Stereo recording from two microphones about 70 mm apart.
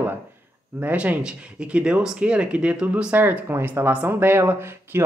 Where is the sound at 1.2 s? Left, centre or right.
Centre; by 5.0 s right.